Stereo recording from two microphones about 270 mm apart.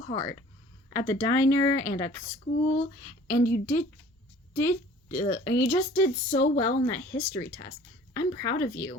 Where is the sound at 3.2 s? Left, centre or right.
Left.